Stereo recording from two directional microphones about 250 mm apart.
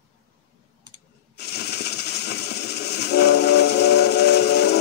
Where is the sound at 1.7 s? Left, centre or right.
Left.